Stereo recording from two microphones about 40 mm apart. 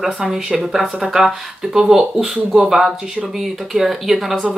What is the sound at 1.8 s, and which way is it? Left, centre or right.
Speech, centre.